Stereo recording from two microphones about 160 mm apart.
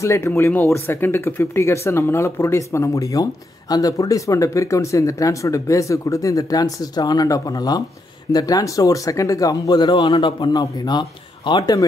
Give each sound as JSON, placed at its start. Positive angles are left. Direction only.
{"t": 0.0, "sound": "speech", "side_deg": 15}